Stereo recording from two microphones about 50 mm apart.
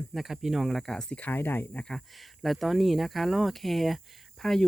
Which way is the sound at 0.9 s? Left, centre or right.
Centre.